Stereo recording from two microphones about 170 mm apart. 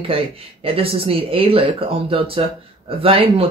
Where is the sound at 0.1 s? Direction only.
35° right (ahead or behind).